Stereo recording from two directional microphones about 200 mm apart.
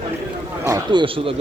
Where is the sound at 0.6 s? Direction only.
20° right (ahead or behind).